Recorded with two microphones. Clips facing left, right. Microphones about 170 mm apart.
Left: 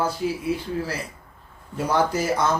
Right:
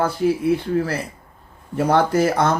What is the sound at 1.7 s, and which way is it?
Speech, 60° right (ahead or behind).